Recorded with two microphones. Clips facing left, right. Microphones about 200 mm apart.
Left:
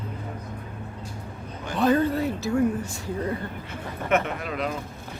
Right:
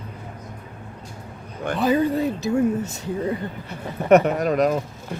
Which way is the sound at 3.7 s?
40° right (ahead or behind).